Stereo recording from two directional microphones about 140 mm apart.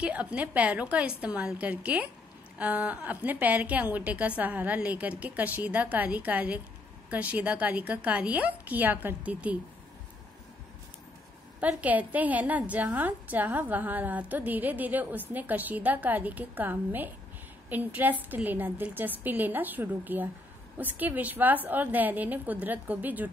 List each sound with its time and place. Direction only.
0.0 s a woman's voice: 10° right (ahead or behind)
11.6 s a woman's voice: 10° right (ahead or behind)